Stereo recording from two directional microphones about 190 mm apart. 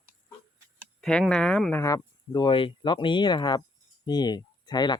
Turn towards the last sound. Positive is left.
turn(degrees=20)  # may be behind; listen again after turning